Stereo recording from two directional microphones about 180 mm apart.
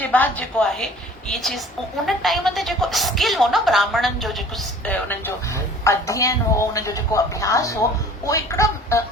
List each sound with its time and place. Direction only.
0.0 s a woman's voice: 10° left (ahead or behind)
4.9 s a woman's voice: 10° left (ahead or behind)